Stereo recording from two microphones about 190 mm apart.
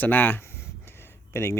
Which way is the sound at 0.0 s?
10° left (ahead or behind).